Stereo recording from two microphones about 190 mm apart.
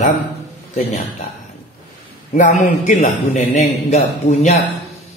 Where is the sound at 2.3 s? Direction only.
40° left (ahead or behind).